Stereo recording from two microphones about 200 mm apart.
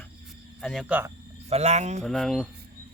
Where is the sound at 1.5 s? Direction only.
35° right (ahead or behind).